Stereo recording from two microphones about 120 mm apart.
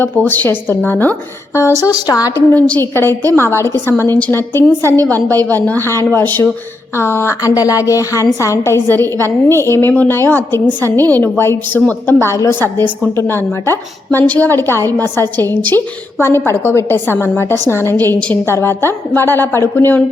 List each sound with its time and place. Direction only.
0.0 s a woman's voice: 15° left (ahead or behind); by 2.4 s 30° left (ahead or behind)
2.5 s a woman's voice: 15° left (ahead or behind)